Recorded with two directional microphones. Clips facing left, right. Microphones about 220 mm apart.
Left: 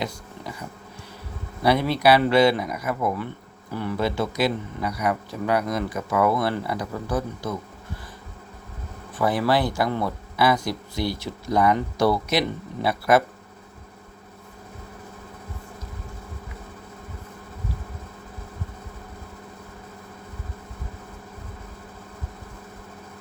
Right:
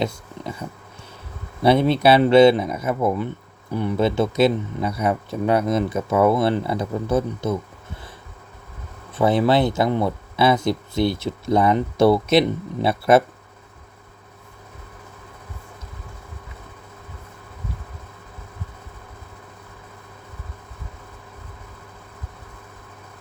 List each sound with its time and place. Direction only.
1.6 s speech: 25° right (ahead or behind)
9.1 s speech: 25° right (ahead or behind)